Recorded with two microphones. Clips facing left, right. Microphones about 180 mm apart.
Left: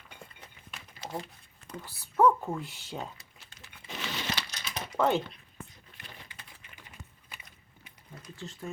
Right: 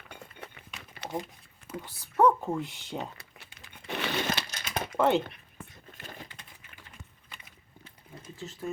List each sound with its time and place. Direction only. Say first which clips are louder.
0.3 s a sound: right 5 dB; 65° right (ahead or behind)
1.8 s speech: even; 5° left (ahead or behind)
2.4 s speech: right 3 dB; 5° right (ahead or behind)
3.2 s crumpling: right 3 dB; 65° right (ahead or behind)
4.9 s speech: right 2 dB; 15° right (ahead or behind)
5.9 s a sound: right 5 dB; 45° right (ahead or behind)
8.4 s speech: right 4 dB; 5° right (ahead or behind)